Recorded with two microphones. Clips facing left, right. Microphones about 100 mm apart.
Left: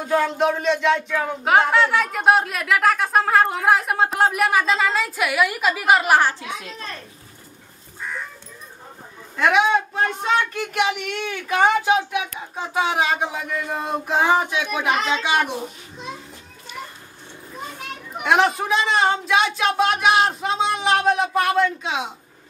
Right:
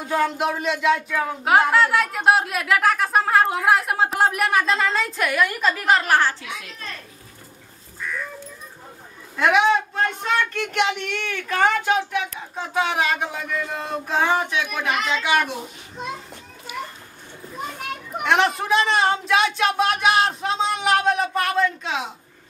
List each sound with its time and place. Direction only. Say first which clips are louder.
0.1 s speech: left 2 dB; 5° right (ahead or behind); by 6.3 s 15° left (ahead or behind)
6.4 s speech: left 3 dB; 30° left (ahead or behind)
9.4 s speech: even; centre (ahead or behind)
14.9 s speech: left 1 dB; 25° left (ahead or behind)
18.2 s speech: left 2 dB; 5° left (ahead or behind)